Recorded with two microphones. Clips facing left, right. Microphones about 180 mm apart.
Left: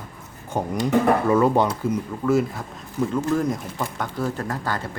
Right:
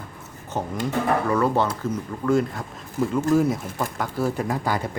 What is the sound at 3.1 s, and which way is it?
Speech, 5° right (ahead or behind).